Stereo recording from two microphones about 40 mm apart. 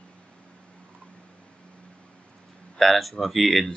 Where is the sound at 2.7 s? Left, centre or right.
Centre.